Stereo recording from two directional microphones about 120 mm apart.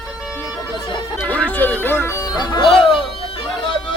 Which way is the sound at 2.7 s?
45° left (ahead or behind).